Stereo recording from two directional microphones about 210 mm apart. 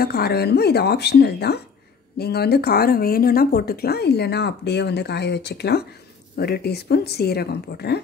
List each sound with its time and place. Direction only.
0.0 s speech: 50° left (ahead or behind)